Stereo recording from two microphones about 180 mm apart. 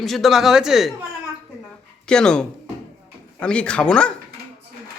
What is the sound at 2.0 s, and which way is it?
Speech, 5° left (ahead or behind).